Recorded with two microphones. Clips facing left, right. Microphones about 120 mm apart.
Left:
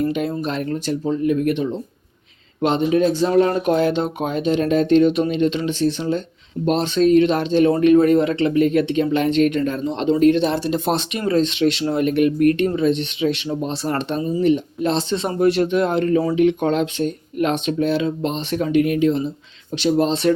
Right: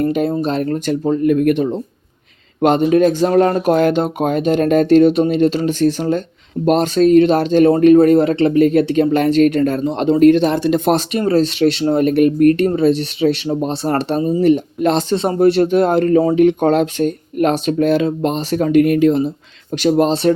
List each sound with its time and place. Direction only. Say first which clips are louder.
0.1 s speech: right 5 dB; 40° right (ahead or behind)
0.7 s speech: right 5 dB; 50° right (ahead or behind)
5.8 s speech: right 4 dB; 50° right (ahead or behind)
7.7 s speech: right 5 dB; 35° right (ahead or behind)
9.0 s speech: right 5 dB; 45° right (ahead or behind)
11.1 s speech: right 4 dB; 35° right (ahead or behind)
14.8 s speech: right 5 dB; 60° right (ahead or behind)
15.1 s speech: right 4 dB; 35° right (ahead or behind)